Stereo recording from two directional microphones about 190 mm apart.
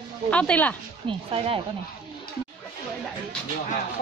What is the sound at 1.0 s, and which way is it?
Speech, 30° right (ahead or behind).